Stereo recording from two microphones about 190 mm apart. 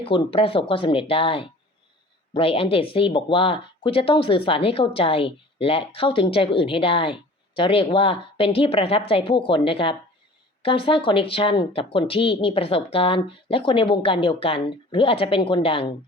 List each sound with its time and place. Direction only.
0.0 s speech: 25° left (ahead or behind)